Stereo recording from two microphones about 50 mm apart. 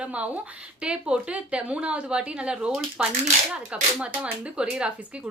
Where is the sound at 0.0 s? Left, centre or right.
Right.